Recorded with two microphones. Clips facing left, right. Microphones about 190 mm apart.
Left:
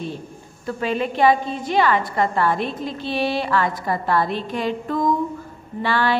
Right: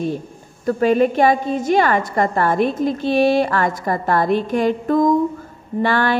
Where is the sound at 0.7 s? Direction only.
45° right (ahead or behind).